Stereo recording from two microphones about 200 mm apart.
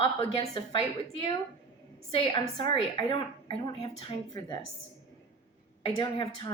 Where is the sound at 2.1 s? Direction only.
25° left (ahead or behind).